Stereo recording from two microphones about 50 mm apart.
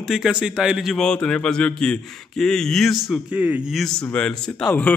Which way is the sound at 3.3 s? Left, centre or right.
Right.